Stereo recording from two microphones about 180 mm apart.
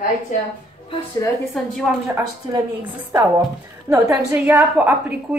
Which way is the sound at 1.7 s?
5° right (ahead or behind).